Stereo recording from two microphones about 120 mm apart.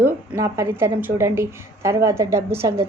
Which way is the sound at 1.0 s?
20° right (ahead or behind).